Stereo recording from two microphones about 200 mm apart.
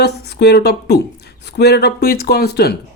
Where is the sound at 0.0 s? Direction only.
55° left (ahead or behind).